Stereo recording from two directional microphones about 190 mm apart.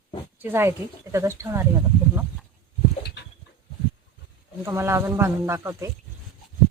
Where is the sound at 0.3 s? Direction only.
10° right (ahead or behind).